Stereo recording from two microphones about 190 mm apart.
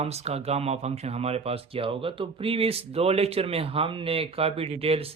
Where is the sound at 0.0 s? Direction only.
35° right (ahead or behind).